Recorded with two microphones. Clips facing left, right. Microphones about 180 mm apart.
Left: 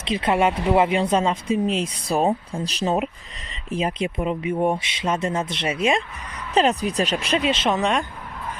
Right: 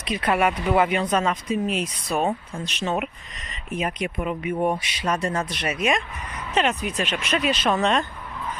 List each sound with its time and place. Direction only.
0.0 s speech: 25° left (ahead or behind)